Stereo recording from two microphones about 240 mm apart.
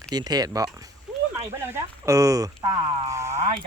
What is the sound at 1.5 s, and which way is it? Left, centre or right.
Speech, centre.